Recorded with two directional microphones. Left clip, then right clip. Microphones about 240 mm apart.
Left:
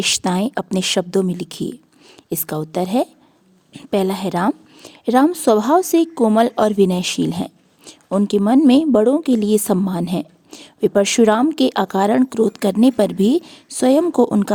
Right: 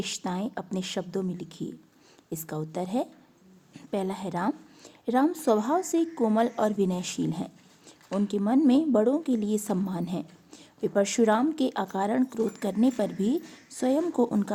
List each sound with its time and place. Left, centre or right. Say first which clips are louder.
0.0 s a woman's voice: left 14 dB; left